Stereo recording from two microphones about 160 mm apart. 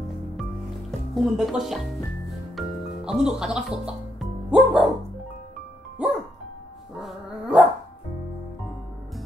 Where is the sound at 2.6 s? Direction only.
5° right (ahead or behind).